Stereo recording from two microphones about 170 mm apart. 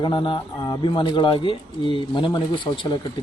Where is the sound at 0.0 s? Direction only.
30° left (ahead or behind).